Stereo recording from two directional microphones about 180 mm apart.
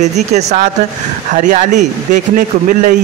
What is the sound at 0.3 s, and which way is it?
Speech, 40° right (ahead or behind).